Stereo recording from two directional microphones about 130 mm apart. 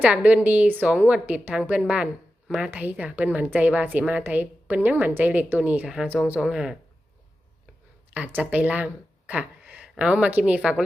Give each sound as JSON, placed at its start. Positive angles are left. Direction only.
{"t": 0.0, "sound": "speech", "side_deg": -10}
{"t": 8.1, "sound": "speech", "side_deg": -10}